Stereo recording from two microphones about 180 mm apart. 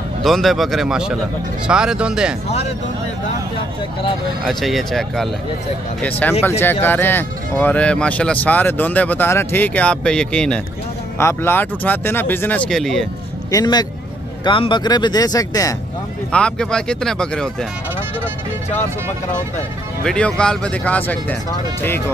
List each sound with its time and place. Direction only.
0.2 s speech: centre (ahead or behind)
4.5 s speech: centre (ahead or behind)
13.5 s speech: 20° left (ahead or behind)
16.3 s speech: 5° left (ahead or behind)
20.0 s speech: 5° left (ahead or behind)